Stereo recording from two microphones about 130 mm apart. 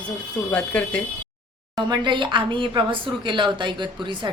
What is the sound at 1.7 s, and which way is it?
A woman's voice, 30° right (ahead or behind).